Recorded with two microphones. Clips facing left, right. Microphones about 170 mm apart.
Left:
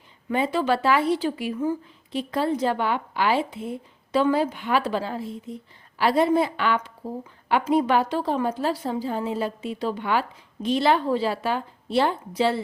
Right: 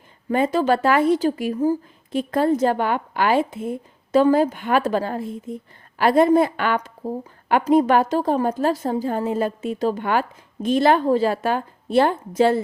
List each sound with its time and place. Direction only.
0.3 s a woman's voice: 45° right (ahead or behind)